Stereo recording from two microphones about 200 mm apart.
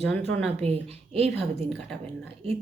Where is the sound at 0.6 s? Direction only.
30° right (ahead or behind).